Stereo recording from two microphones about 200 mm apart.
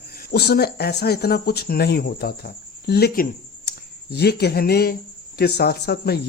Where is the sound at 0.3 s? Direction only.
55° left (ahead or behind).